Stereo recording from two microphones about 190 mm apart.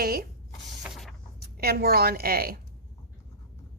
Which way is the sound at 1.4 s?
55° right (ahead or behind).